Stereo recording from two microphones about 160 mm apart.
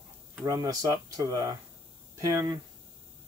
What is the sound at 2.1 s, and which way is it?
Speech, 20° right (ahead or behind).